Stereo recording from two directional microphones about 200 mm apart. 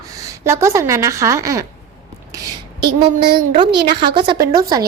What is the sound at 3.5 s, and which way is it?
A woman's voice, 25° right (ahead or behind).